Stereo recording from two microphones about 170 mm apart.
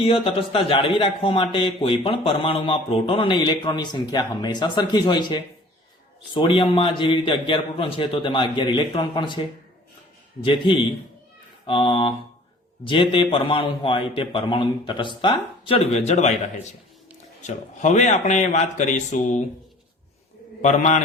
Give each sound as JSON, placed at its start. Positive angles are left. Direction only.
{"t": 0.0, "sound": "a man's voice", "side_deg": 35}
{"t": 10.4, "sound": "a man's voice", "side_deg": 30}
{"t": 17.4, "sound": "speech", "side_deg": 45}
{"t": 20.6, "sound": "a man's voice", "side_deg": 45}